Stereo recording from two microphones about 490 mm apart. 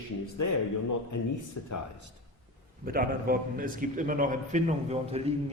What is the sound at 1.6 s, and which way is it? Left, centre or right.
Speech, left.